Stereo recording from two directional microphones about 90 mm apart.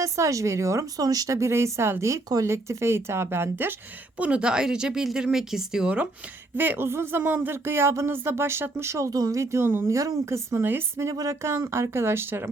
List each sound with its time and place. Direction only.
0.0 s speech: 35° right (ahead or behind)
4.2 s speech: 10° right (ahead or behind)
6.6 s speech: 25° right (ahead or behind)